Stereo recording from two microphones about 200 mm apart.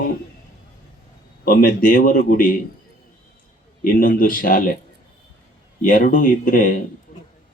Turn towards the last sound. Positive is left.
turn(degrees=40)  # may be behind; listen again after turning